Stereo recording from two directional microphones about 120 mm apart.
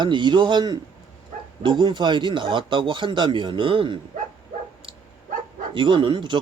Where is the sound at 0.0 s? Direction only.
40° right (ahead or behind).